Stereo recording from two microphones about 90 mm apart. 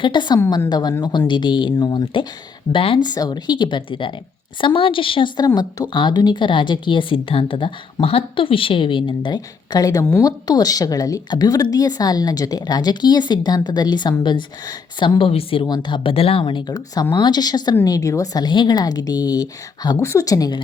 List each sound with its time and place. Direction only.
0.0 s a woman's voice: 55° left (ahead or behind)
2.7 s a woman's voice: 75° left (ahead or behind)
3.0 s a woman's voice: 50° left (ahead or behind); by 5.3 s 75° left (ahead or behind)
5.5 s speech: 50° left (ahead or behind); by 7.7 s 70° left (ahead or behind)
8.0 s a woman's voice: 85° left
15.6 s speech: 50° left (ahead or behind)
16.7 s a woman's voice: 45° left (ahead or behind)
17.8 s speech: 40° left (ahead or behind)
18.4 s a woman's voice: 55° left (ahead or behind)
20.0 s speech: 35° left (ahead or behind)